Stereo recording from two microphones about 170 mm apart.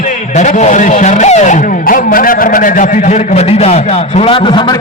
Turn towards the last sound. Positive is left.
turn(degrees=30)  # may be behind; listen again after turning